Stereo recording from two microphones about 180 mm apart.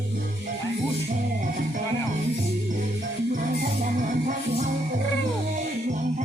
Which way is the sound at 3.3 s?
50° right (ahead or behind).